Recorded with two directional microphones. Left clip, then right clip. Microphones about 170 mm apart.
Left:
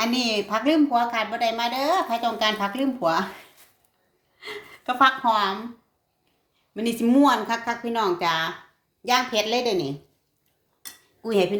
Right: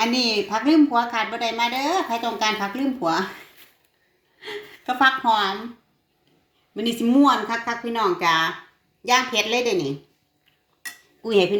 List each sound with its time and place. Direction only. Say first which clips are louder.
0.0 s a woman's voice: right 3 dB; centre (ahead or behind)
4.9 s a woman's voice: right 1 dB; centre (ahead or behind)
6.7 s a woman's voice: right 1 dB; 5° left (ahead or behind)
11.2 s cutlery: right 3 dB; 20° left (ahead or behind)